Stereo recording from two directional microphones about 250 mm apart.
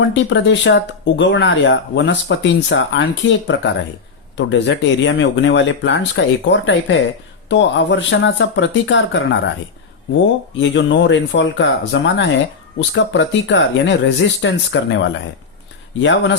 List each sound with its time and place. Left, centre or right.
0.1 s speech: left
10.6 s speech: left